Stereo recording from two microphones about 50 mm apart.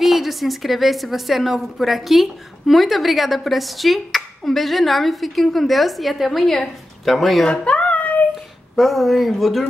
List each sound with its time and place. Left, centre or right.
0.0 s a woman's voice: centre
7.4 s a sound: left
8.7 s a woman's voice: centre